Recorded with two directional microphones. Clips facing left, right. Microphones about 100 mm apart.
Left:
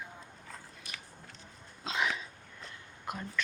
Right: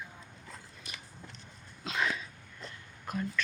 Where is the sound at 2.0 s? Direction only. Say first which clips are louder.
Even; 15° left (ahead or behind).